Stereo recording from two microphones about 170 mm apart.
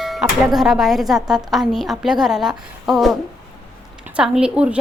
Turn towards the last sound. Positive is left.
turn(degrees=-5)  # may be behind; listen again after turning